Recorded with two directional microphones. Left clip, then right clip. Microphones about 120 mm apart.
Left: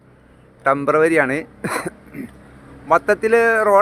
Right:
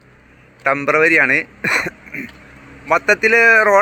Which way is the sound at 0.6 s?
30° left (ahead or behind).